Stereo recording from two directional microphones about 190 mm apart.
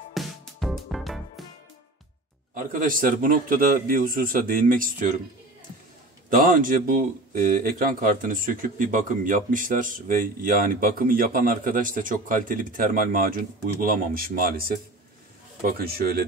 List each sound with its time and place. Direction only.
0.1 s music: centre (ahead or behind)
2.8 s speech: 45° right (ahead or behind)
6.3 s speech: 45° right (ahead or behind)